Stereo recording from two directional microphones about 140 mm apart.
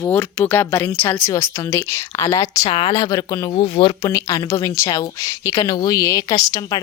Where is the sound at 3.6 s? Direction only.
35° left (ahead or behind).